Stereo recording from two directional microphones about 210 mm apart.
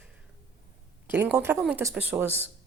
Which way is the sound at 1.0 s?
10° right (ahead or behind).